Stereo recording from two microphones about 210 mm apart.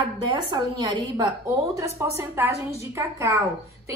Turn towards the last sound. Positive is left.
turn(degrees=-15)  # may be behind; listen again after turning